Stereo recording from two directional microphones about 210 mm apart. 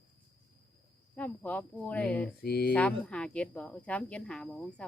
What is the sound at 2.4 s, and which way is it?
Speech, 50° left (ahead or behind).